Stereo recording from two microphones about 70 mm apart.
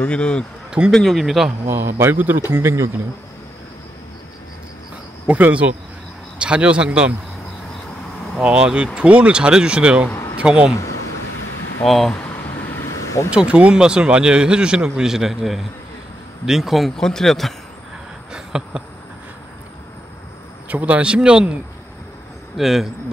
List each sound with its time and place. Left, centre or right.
0.0 s speech: centre
0.7 s a sound: centre
0.9 s speech: centre
1.7 s a man's voice: right
2.5 s a man's voice: right
5.2 s speech: right
8.4 s speech: centre
11.8 s speech: centre
12.7 s vehicle: left
13.3 s speech: centre
18.3 s a sound: centre
20.6 s speech: right
22.6 s speech: centre